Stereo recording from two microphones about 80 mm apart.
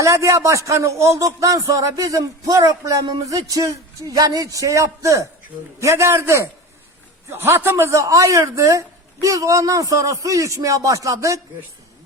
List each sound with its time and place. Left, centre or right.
0.0 s a man's voice: right